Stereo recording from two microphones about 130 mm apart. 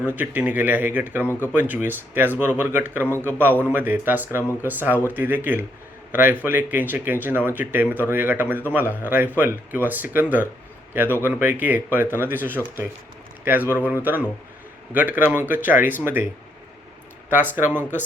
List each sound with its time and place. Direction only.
0.0 s a man's voice: 15° right (ahead or behind)
17.2 s speech: 15° right (ahead or behind)